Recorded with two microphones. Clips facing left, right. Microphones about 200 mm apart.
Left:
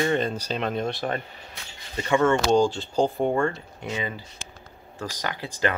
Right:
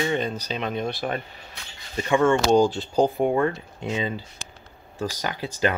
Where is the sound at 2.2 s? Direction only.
10° right (ahead or behind).